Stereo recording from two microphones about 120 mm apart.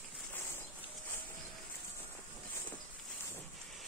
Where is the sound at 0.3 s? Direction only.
20° left (ahead or behind).